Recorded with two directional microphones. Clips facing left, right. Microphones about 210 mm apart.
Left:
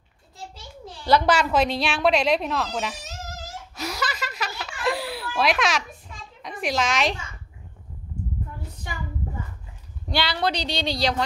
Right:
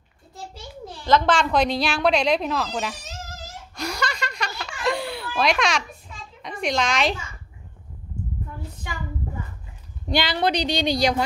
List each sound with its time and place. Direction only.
1.0 s speech: 10° left (ahead or behind)
3.7 s a sound: 5° left (ahead or behind)
6.4 s a child's voice: centre (ahead or behind)
10.1 s speech: 20° right (ahead or behind)